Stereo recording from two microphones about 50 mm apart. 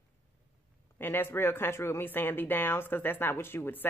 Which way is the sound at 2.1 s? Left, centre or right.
Left.